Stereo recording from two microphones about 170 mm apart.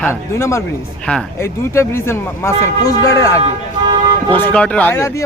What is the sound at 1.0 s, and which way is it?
Speech, 5° left (ahead or behind).